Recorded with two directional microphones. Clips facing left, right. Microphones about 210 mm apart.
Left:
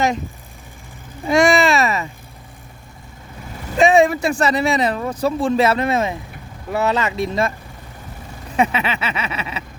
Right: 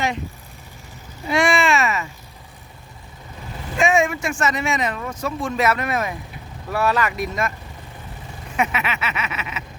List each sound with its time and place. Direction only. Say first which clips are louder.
1.3 s a sound: left 4 dB; 40° left (ahead or behind)
3.8 s speech: left 6 dB; 35° left (ahead or behind)
8.5 s speech: left 4 dB; 30° left (ahead or behind)